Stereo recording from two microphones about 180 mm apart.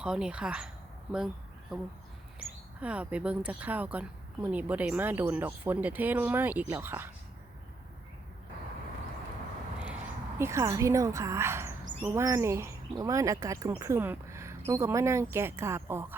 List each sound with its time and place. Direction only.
0.0 s speech: 5° right (ahead or behind)
2.8 s speech: 5° right (ahead or behind)
10.3 s speech: 15° right (ahead or behind)